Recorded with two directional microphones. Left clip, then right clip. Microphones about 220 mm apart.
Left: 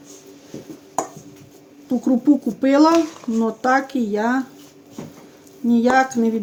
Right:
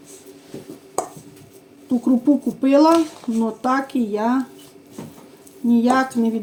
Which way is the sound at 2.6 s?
25° left (ahead or behind).